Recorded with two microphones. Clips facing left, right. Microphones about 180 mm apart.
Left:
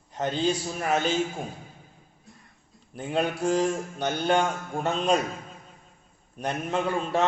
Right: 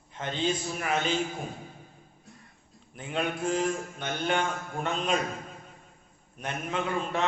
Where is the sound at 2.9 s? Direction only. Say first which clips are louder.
Left 4 dB; 35° left (ahead or behind).